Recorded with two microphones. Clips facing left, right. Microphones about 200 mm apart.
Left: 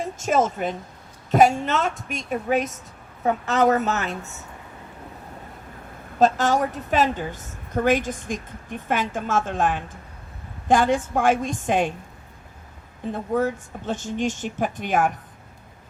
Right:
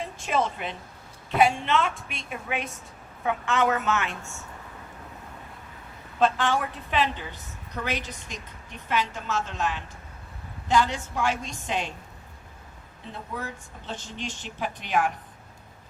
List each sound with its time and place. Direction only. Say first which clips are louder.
0.0 s a woman's voice: left 5 dB; 45° left (ahead or behind)
6.1 s a woman's voice: left 5 dB; 40° left (ahead or behind)
13.1 s a woman's voice: left 13 dB; 50° left (ahead or behind)